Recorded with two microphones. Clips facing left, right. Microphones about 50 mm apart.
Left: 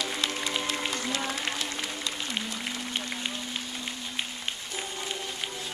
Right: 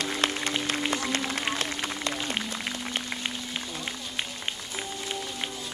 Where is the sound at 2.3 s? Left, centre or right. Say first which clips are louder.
Right 1 dB; centre.